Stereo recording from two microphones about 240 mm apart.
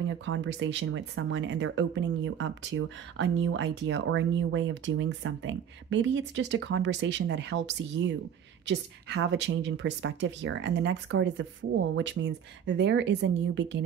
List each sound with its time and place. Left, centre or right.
0.2 s speech: right